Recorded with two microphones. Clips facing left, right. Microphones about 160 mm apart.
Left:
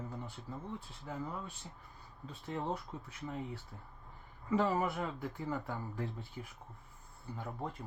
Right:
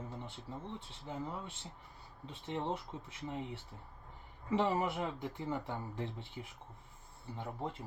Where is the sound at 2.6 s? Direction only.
25° right (ahead or behind).